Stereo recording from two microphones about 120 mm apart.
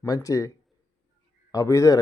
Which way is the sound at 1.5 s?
25° left (ahead or behind).